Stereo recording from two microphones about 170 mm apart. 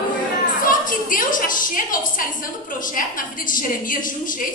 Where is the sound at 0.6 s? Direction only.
50° left (ahead or behind).